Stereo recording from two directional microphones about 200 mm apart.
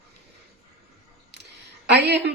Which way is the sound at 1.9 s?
55° right (ahead or behind).